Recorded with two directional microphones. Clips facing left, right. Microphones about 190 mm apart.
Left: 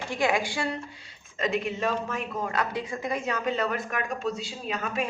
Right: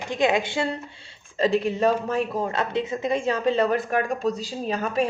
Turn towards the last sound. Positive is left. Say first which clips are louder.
# right 6 dB
turn(degrees=-35)  # may be behind; listen again after turning